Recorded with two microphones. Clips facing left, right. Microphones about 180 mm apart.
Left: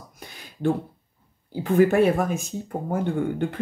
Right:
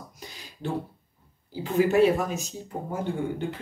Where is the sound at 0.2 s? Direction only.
55° left (ahead or behind).